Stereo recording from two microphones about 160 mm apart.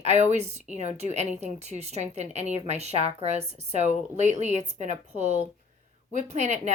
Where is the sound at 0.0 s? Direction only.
45° right (ahead or behind).